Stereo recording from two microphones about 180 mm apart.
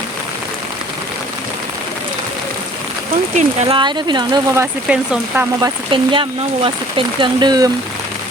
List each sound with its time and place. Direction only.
3.3 s speech: 40° right (ahead or behind)
3.8 s speech: 25° right (ahead or behind)
5.9 s speech: 30° right (ahead or behind)